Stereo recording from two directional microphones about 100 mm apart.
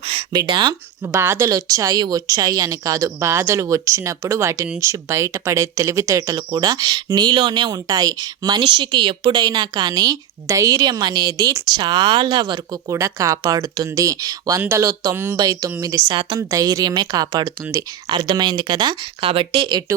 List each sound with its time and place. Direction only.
0.0 s a sound: 80° right
0.3 s speech: 50° right (ahead or behind)
1.0 s speech: 25° right (ahead or behind)
1.5 s speech: 35° right (ahead or behind)
11.8 s speech: 50° right (ahead or behind)
12.9 s speech: 30° right (ahead or behind)
15.4 s speech: 40° right (ahead or behind)
19.2 s speech: 65° right (ahead or behind)